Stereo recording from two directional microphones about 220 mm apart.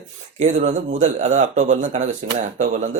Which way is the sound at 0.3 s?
35° right (ahead or behind).